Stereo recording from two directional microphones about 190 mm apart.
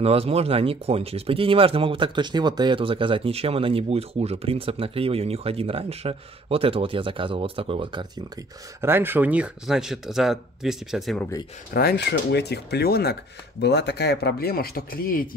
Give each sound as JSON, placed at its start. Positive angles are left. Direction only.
{"t": 0.0, "sound": "speech", "side_deg": -30}
{"t": 8.8, "sound": "speech", "side_deg": -10}
{"t": 11.7, "sound": "speech", "side_deg": 55}